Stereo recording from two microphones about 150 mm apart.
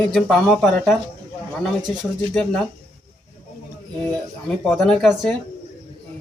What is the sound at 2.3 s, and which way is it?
Speech, 5° left (ahead or behind).